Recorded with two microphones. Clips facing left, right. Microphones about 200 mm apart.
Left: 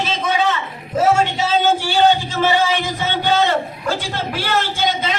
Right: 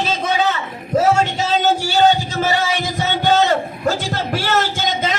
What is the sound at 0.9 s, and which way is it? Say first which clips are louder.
Music: right 1 dB; 40° right (ahead or behind).